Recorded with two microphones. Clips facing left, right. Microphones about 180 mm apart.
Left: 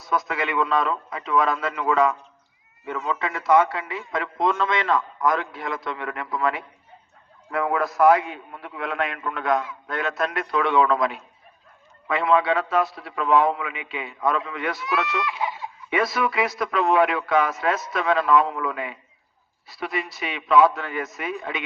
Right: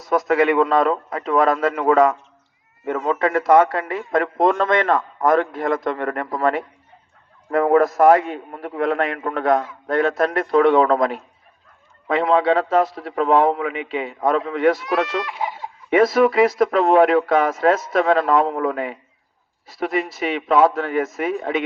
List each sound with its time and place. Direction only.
0.1 s a man's voice: 45° right (ahead or behind)